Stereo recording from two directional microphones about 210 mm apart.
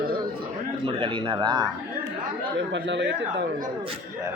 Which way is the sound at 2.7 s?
55° right (ahead or behind).